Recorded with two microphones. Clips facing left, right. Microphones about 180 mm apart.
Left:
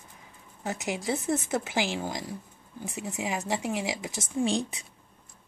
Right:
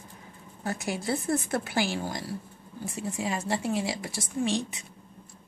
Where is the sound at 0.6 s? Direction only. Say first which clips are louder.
Even; 15° left (ahead or behind).